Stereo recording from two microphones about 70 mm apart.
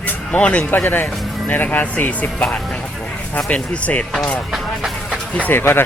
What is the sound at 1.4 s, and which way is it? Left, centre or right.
Speech, left.